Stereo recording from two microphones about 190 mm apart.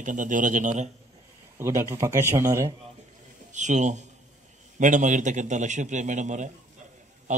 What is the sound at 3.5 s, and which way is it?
Speech, 40° right (ahead or behind).